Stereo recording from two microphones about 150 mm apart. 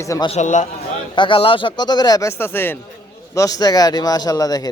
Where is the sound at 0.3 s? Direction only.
50° left (ahead or behind).